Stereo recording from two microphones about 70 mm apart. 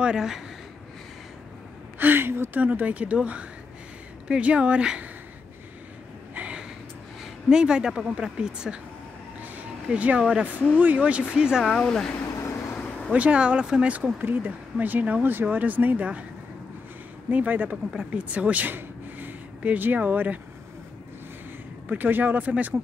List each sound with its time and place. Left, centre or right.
0.0 s speech: centre
2.0 s speech: right
2.6 s a woman's voice: right
6.3 s a sound: centre
7.4 s a woman's voice: centre
9.4 s a sound: right
10.8 s a woman's voice: right
11.8 s speech: centre
12.1 s vehicle: left
13.1 s speech: centre
17.3 s speech: right
21.8 s speech: right